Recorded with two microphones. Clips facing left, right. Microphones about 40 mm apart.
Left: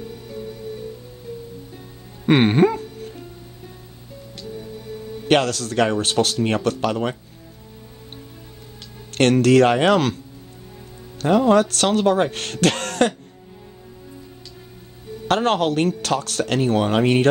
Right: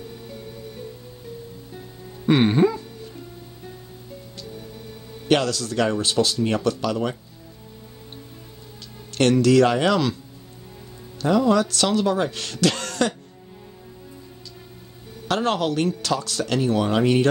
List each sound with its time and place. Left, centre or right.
2.2 s music: left
5.3 s speech: left
9.1 s speech: left
11.2 s speech: left
15.2 s speech: left